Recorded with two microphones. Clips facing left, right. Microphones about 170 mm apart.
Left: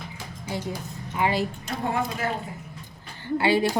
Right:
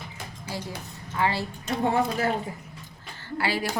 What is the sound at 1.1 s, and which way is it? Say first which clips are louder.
Speech: left 2 dB; 15° left (ahead or behind).